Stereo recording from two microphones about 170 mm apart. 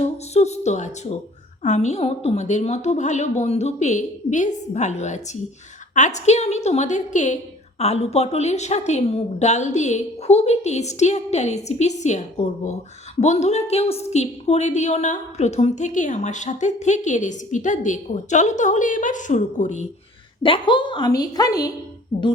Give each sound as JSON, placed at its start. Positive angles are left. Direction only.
{"t": 0.0, "sound": "a woman's voice", "side_deg": 40}
{"t": 20.4, "sound": "a woman's voice", "side_deg": 30}